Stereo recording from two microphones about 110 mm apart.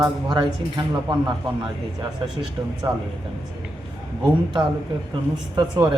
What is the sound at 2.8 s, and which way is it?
Speech, 30° right (ahead or behind).